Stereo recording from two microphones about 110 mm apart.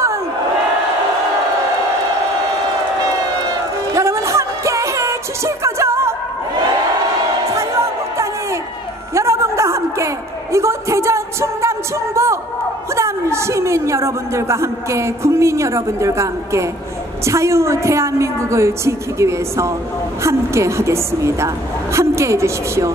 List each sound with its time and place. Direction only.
3.9 s music: 25° right (ahead or behind)
7.5 s a sound: 25° right (ahead or behind)
12.9 s a woman's voice: 25° right (ahead or behind)